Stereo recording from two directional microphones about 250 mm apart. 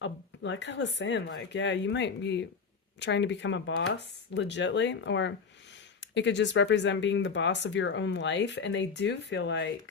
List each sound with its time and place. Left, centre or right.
0.0 s speech: left